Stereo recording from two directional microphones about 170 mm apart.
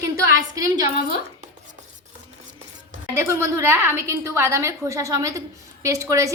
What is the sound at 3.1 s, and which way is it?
A woman's voice, 15° right (ahead or behind).